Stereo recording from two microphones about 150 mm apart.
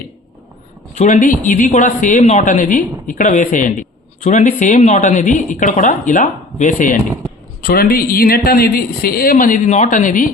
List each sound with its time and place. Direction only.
0.9 s speech: 55° left (ahead or behind)
2.5 s speech: 65° left (ahead or behind)
7.6 s a man's voice: 85° left; by 10.3 s 65° left (ahead or behind)